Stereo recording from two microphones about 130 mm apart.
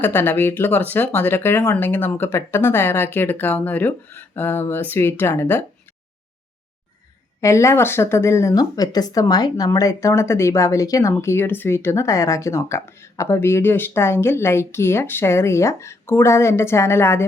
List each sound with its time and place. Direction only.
0.0 s speech: 15° left (ahead or behind)
7.4 s speech: 20° left (ahead or behind)